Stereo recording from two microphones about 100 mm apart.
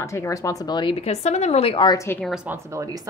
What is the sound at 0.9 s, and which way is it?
Speech, 90° left.